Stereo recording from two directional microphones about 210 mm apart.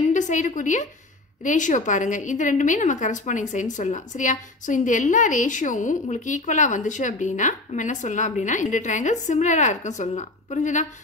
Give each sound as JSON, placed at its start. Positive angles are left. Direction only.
{"t": 0.1, "sound": "a woman's voice", "side_deg": 35}